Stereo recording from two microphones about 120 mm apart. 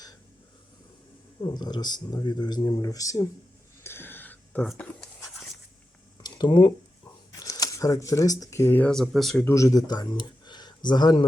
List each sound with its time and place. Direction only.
1.4 s speech: 40° left (ahead or behind)
3.8 s a sound: 20° left (ahead or behind)
6.2 s a sound: 40° left (ahead or behind)
7.3 s speech: 30° left (ahead or behind)
8.9 s speech: centre (ahead or behind)
9.4 s speech: 25° left (ahead or behind)